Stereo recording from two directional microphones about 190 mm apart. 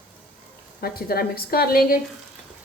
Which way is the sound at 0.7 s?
50° left (ahead or behind).